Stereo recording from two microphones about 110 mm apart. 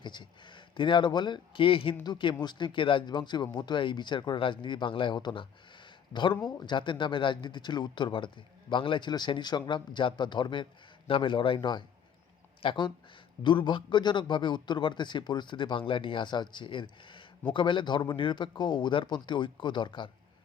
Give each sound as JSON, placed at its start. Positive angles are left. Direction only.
{"t": 0.0, "sound": "speech", "side_deg": 45}